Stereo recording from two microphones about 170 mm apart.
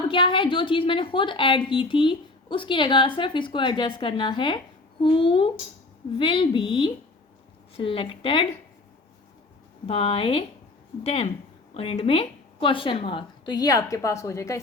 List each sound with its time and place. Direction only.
0.1 s a woman's voice: 30° left (ahead or behind)
9.8 s a woman's voice: 35° left (ahead or behind); by 14.6 s 20° left (ahead or behind)